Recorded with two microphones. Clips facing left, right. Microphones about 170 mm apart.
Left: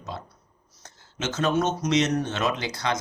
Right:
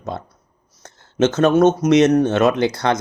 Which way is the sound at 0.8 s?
55° right (ahead or behind).